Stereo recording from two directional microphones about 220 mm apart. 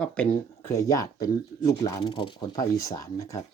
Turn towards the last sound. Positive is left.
turn(degrees=15)  # may be behind; listen again after turning